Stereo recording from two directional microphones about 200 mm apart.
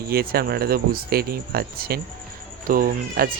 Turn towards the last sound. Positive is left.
turn(degrees=-45)  # may be behind; listen again after turning